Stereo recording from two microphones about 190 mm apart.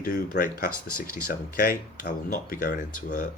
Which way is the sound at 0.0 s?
45° left (ahead or behind).